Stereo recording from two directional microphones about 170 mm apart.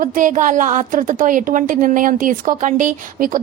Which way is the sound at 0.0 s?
50° right (ahead or behind).